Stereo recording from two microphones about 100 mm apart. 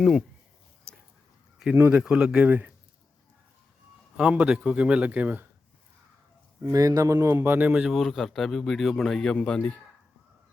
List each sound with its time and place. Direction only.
0.0 s a man's voice: centre (ahead or behind)
1.9 s a man's voice: 10° right (ahead or behind)
4.2 s a man's voice: 10° right (ahead or behind)
6.7 s speech: 35° right (ahead or behind); by 7.9 s 15° right (ahead or behind)
7.9 s a man's voice: centre (ahead or behind)